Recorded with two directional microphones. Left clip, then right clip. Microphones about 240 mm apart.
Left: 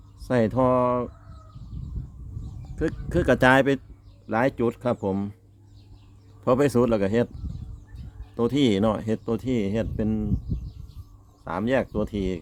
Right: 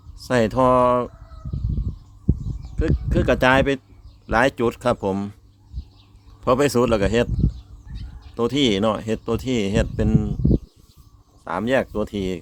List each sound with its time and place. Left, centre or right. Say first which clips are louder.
0.2 s speech: right 4 dB; centre
2.7 s speech: right 2 dB; centre
4.3 s speech: right 5 dB; centre
6.4 s speech: right 3 dB; centre
8.4 s speech: right 3 dB; centre
11.4 s speech: right 4 dB; centre